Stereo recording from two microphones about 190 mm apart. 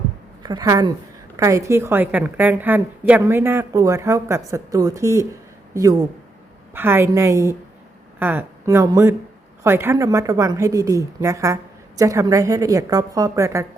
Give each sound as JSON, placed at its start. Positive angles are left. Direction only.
{"t": 0.4, "sound": "a woman's voice", "side_deg": -20}